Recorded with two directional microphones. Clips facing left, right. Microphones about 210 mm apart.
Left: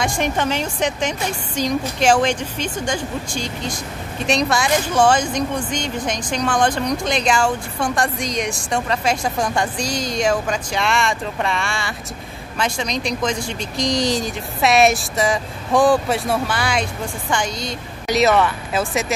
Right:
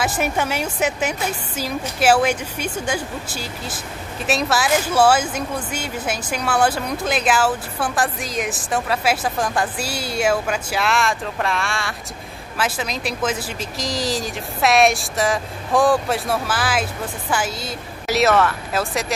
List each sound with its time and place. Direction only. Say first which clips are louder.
0.0 s a woman's voice: left 1 dB; 5° right (ahead or behind)